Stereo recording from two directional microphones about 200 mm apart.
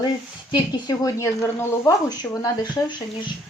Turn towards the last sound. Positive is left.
turn(degrees=25)  # may be behind; listen again after turning